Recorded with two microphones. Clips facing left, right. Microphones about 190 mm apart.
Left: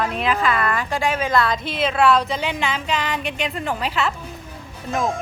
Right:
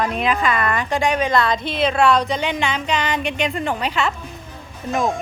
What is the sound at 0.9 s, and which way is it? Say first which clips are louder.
Speech: right 3 dB; centre (ahead or behind).